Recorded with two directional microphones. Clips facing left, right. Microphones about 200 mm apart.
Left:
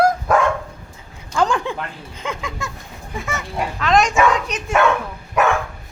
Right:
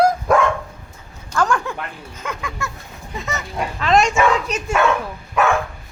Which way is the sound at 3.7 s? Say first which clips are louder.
Even; centre (ahead or behind).